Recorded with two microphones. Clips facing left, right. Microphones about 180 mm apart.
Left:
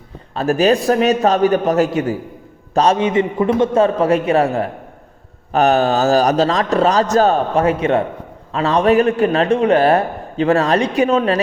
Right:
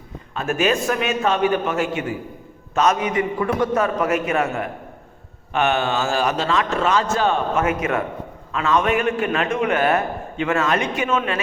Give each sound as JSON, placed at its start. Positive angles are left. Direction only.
{"t": 0.3, "sound": "a man's voice", "side_deg": 35}